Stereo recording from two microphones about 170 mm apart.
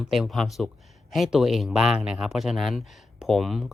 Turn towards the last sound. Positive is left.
turn(degrees=0)  # may be behind; listen again after turning